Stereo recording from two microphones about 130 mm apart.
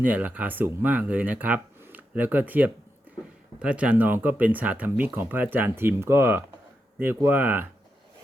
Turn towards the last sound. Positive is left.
turn(degrees=-15)  # may be behind; listen again after turning